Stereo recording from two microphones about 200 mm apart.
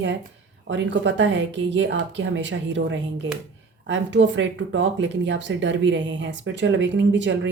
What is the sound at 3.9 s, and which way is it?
Speech, 65° right (ahead or behind).